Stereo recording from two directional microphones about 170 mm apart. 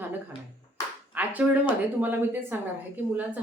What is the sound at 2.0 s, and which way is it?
Speech, 10° right (ahead or behind).